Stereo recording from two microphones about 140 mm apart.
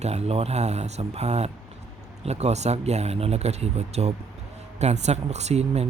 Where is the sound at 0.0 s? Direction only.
50° right (ahead or behind).